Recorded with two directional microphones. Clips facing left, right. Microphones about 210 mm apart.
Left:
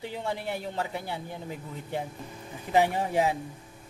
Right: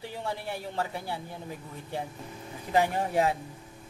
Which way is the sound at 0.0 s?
20° left (ahead or behind).